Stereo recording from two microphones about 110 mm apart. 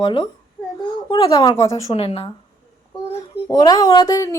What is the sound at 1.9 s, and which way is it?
Speech, 60° left (ahead or behind).